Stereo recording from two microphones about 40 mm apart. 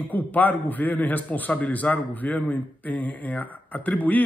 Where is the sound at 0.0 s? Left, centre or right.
Left.